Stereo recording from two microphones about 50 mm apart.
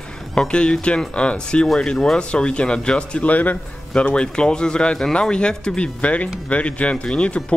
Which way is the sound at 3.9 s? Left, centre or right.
Left.